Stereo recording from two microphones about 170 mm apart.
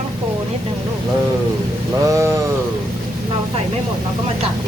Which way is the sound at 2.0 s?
20° right (ahead or behind).